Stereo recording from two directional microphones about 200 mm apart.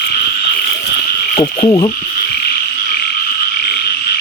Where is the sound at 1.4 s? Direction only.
25° left (ahead or behind).